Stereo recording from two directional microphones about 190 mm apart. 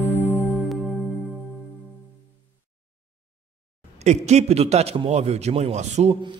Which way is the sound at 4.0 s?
35° right (ahead or behind).